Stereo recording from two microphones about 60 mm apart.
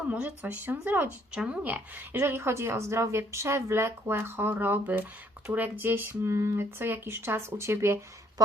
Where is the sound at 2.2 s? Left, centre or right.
Right.